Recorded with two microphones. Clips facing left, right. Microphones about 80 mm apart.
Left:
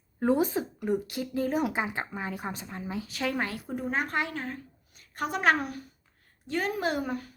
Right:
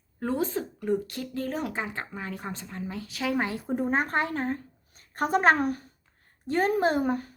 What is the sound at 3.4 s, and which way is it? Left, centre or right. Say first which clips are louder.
Speech: right 4 dB; right.